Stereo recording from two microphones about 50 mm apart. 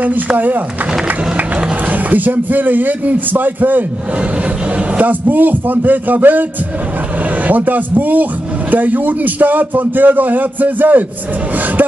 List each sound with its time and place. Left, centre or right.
1.9 s speech: right
4.9 s speech: right
7.4 s speech: right